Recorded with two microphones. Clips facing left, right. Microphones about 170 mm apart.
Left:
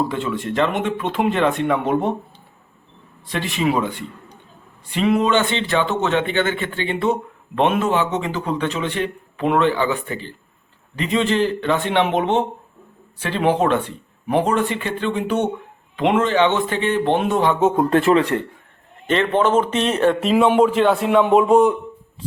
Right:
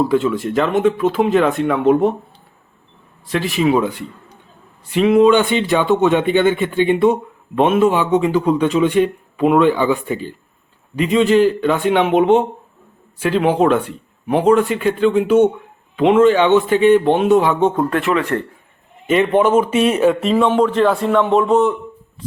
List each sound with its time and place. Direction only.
0.0 s speech: centre (ahead or behind)
4.9 s speech: 5° right (ahead or behind)
17.9 s speech: 30° left (ahead or behind)
19.0 s speech: 10° right (ahead or behind)
20.3 s a man's voice: 10° left (ahead or behind)